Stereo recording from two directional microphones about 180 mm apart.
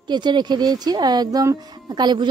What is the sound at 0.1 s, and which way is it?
Speech, 25° right (ahead or behind).